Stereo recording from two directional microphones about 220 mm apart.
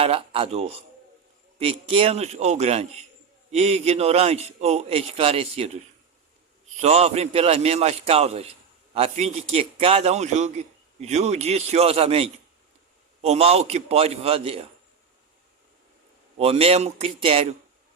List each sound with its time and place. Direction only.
0.0 s a man's voice: 25° right (ahead or behind)
6.8 s a man's voice: 30° right (ahead or behind)
16.4 s a man's voice: 25° right (ahead or behind)